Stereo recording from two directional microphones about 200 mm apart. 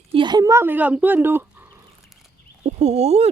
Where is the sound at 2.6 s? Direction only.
35° right (ahead or behind).